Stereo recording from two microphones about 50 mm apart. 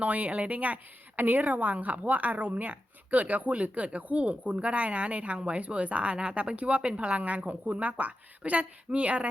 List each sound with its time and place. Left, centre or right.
0.0 s a woman's voice: right